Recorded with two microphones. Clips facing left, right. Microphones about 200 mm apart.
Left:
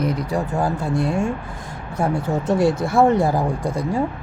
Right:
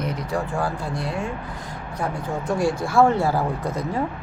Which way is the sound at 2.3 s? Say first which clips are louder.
Left 4 dB; 25° left (ahead or behind).